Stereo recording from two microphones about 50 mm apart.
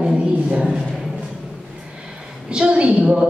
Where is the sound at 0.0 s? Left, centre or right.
Right.